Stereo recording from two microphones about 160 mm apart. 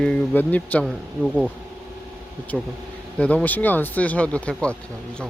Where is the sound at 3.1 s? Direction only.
10° left (ahead or behind).